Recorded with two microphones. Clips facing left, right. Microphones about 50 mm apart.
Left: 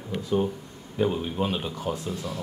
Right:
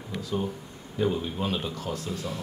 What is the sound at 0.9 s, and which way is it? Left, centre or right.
Speech, centre.